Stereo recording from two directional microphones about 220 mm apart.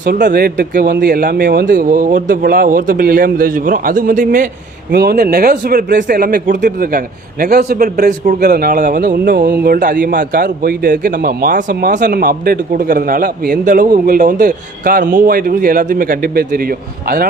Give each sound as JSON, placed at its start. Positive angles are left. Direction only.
{"t": 0.0, "sound": "speech", "side_deg": -35}